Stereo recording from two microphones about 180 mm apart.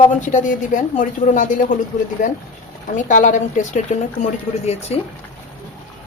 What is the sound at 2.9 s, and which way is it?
A woman's voice, 45° left (ahead or behind).